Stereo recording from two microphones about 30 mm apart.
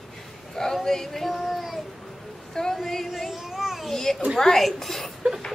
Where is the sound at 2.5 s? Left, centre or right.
Centre.